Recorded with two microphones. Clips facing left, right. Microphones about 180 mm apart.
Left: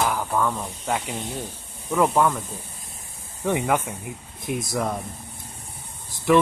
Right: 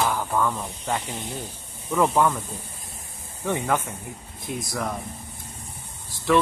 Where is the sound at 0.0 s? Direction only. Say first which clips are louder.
Even; 5° left (ahead or behind).